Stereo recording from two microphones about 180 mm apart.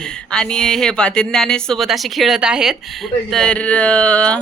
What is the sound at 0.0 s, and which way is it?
Speech, 5° left (ahead or behind).